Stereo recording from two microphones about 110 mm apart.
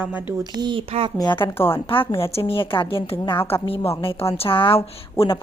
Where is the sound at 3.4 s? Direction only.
60° left (ahead or behind).